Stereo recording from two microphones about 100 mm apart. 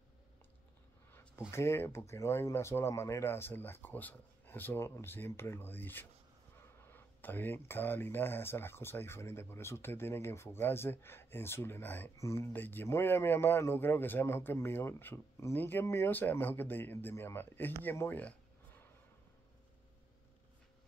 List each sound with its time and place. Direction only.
1.5 s speech: 25° left (ahead or behind)